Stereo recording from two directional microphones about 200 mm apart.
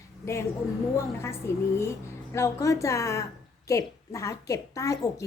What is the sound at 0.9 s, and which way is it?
A woman's voice, 15° left (ahead or behind).